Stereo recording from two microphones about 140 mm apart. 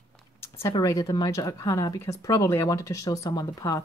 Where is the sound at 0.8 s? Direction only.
25° left (ahead or behind).